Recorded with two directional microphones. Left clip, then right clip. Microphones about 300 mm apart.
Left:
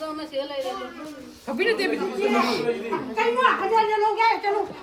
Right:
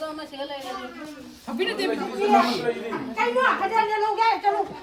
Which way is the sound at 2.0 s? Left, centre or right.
Centre.